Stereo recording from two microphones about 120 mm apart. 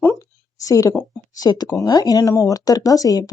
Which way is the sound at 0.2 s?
30° left (ahead or behind).